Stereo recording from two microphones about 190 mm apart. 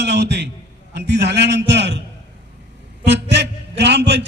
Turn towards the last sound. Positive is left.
turn(degrees=-65)  # may be behind; listen again after turning